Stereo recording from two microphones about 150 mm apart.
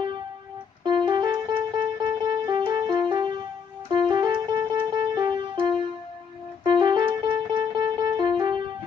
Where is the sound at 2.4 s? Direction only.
30° right (ahead or behind).